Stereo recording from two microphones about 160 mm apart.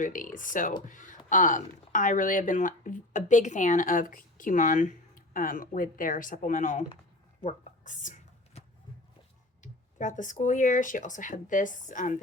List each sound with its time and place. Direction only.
0.0 s speech: 55° left (ahead or behind)
10.0 s speech: 50° left (ahead or behind)